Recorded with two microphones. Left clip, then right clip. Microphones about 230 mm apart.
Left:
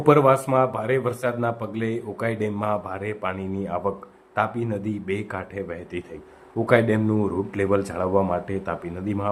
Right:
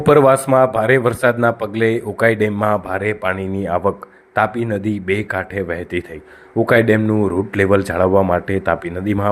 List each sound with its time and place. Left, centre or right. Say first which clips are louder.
0.0 s speech: right 6 dB; right